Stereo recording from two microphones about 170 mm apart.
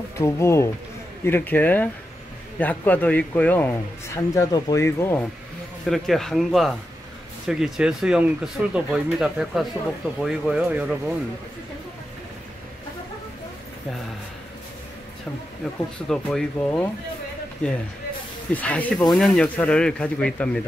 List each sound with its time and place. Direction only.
0.2 s speech: 15° left (ahead or behind)
5.9 s speech: centre (ahead or behind)
15.6 s speech: centre (ahead or behind)